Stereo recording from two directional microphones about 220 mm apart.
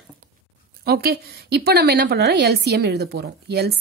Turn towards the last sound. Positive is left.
turn(degrees=-50)  # may be behind; listen again after turning